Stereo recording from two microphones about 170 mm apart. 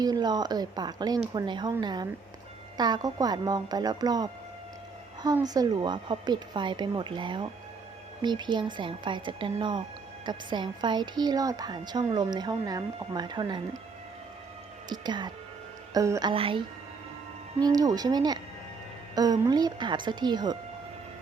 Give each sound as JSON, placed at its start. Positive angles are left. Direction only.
{"t": 0.0, "sound": "a woman's voice", "side_deg": -25}
{"t": 14.8, "sound": "a woman's voice", "side_deg": -25}
{"t": 16.3, "sound": "a woman's voice", "side_deg": -30}